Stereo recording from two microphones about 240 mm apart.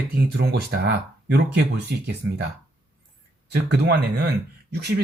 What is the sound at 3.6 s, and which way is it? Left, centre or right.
Speech, right.